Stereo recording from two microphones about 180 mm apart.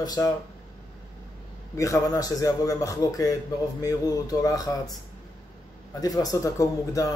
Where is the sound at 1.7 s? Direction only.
15° left (ahead or behind).